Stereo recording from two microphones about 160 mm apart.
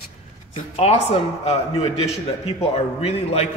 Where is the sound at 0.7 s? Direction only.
40° left (ahead or behind).